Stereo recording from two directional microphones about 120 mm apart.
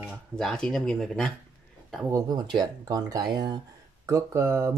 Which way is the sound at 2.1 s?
35° right (ahead or behind).